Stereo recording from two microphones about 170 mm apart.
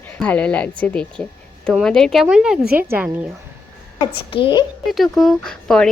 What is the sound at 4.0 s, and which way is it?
Speech, 30° left (ahead or behind).